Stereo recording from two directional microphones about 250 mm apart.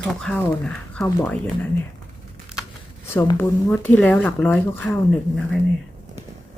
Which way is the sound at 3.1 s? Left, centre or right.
Centre.